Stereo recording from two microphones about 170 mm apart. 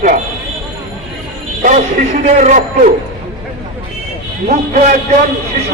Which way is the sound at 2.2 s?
45° right (ahead or behind).